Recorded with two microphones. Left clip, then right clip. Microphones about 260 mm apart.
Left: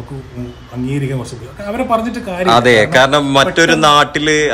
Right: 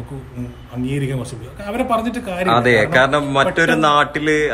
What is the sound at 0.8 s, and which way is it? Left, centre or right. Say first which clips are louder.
A man's voice: left 3 dB; centre.